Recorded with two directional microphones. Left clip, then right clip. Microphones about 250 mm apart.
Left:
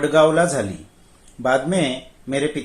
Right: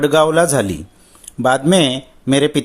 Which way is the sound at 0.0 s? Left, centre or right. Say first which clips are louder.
Right 3 dB; right.